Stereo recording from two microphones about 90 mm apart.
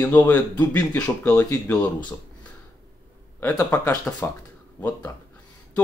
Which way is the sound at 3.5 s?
40° left (ahead or behind).